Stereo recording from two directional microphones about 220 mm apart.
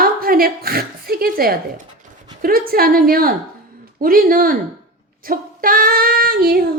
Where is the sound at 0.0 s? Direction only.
40° right (ahead or behind).